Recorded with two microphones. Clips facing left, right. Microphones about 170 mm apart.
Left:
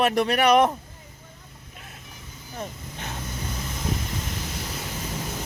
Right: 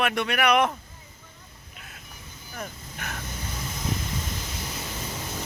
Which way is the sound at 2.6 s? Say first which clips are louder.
Left 2 dB; 25° left (ahead or behind).